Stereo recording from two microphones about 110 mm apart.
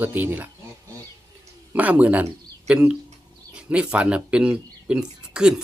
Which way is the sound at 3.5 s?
10° right (ahead or behind).